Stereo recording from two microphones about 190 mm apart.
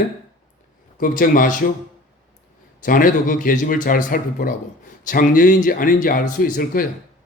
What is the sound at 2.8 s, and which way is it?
Speech, 45° left (ahead or behind).